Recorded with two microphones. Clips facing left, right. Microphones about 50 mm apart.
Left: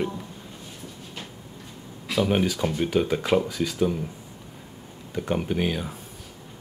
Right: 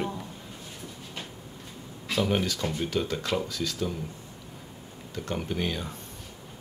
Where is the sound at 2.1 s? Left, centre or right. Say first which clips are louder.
Left 4 dB; centre.